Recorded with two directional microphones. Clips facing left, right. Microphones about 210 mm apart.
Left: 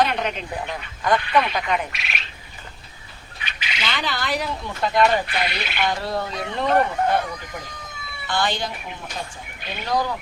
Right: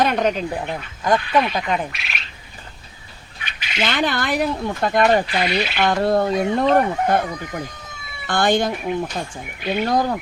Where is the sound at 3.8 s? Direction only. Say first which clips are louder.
Right 7 dB; 55° right (ahead or behind).